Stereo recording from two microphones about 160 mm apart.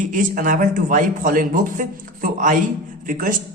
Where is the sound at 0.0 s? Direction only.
55° right (ahead or behind).